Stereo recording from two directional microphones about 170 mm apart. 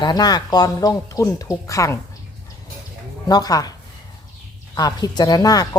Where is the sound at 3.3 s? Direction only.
20° left (ahead or behind).